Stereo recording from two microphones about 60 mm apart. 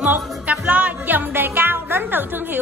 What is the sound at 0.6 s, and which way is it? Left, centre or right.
Music, right.